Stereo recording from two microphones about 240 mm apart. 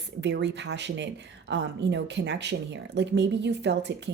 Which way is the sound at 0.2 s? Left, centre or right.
Right.